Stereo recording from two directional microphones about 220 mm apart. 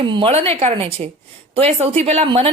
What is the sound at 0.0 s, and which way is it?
A woman's voice, 20° right (ahead or behind).